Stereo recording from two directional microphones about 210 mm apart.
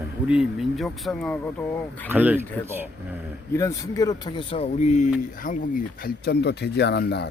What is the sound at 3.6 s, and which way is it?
Speech, 15° left (ahead or behind).